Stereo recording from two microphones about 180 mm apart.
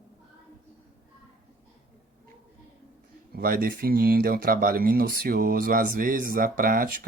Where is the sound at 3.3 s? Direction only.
55° right (ahead or behind).